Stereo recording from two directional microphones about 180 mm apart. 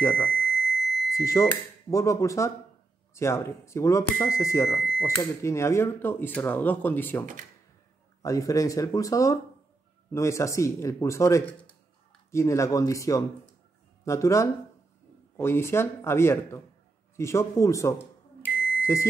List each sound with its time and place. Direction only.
0.0 s speech: 15° left (ahead or behind)
0.3 s a sound: centre (ahead or behind)
1.1 s speech: 15° left (ahead or behind)
4.7 s speech: centre (ahead or behind)
5.4 s speech: 15° left (ahead or behind)